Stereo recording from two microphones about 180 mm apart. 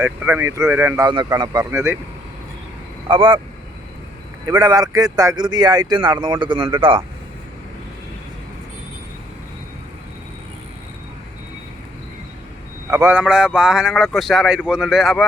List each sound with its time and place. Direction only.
0.0 s speech: 10° right (ahead or behind)
1.0 s speech: 25° right (ahead or behind)
3.1 s speech: 25° right (ahead or behind)
4.4 s speech: 20° right (ahead or behind)
12.9 s speech: 15° right (ahead or behind)